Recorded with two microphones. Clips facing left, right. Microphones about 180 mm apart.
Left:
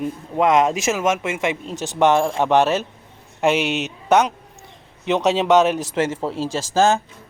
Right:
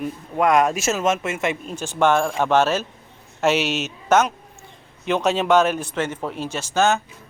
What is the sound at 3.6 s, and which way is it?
Speech, 60° left (ahead or behind).